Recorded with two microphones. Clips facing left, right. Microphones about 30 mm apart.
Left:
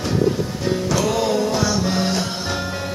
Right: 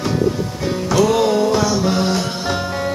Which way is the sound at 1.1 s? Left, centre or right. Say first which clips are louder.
Right 4 dB; centre.